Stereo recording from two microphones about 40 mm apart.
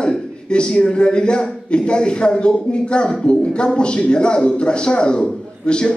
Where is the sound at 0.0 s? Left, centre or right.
Left.